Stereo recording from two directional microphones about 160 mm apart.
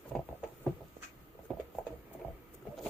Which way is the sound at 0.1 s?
Centre (ahead or behind).